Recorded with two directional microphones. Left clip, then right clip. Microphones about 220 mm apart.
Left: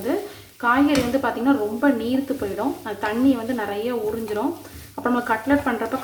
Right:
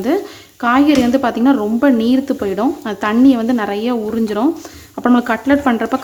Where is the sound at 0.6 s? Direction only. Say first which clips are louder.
Right 6 dB; 50° right (ahead or behind).